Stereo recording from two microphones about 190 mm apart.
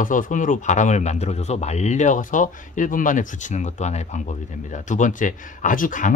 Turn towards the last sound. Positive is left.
turn(degrees=45)  # may be behind; listen again after turning